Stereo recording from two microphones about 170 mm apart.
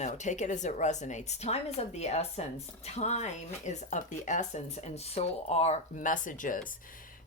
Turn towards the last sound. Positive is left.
turn(degrees=50)  # may be behind; listen again after turning